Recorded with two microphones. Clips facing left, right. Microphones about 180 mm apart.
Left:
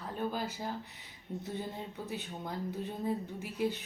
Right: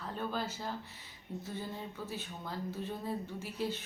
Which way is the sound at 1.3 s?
20° left (ahead or behind).